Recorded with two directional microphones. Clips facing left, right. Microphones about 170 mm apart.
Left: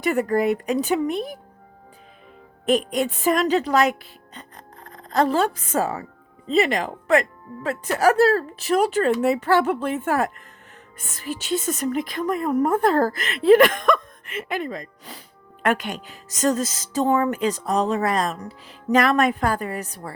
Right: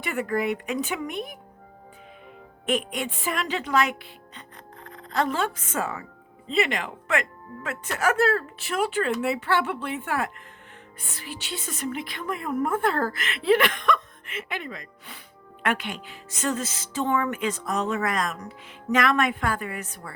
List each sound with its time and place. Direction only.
0.0 s speech: 40° left (ahead or behind)
2.6 s a woman's voice: 40° left (ahead or behind)